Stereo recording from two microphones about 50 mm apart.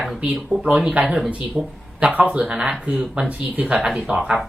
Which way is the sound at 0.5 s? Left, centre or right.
Centre.